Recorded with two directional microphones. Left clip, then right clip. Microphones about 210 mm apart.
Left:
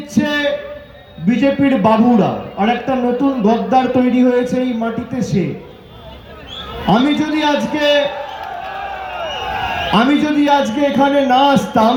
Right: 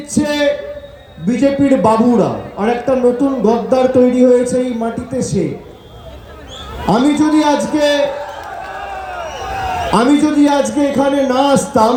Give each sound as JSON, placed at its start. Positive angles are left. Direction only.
{"t": 0.1, "sound": "a sound", "side_deg": -65}
{"t": 1.2, "sound": "a man's voice", "side_deg": -65}
{"t": 6.8, "sound": "a man's voice", "side_deg": -65}
{"t": 9.9, "sound": "a man's voice", "side_deg": -65}